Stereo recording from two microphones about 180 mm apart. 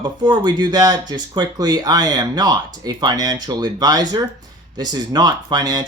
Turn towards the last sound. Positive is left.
turn(degrees=-20)  # may be behind; listen again after turning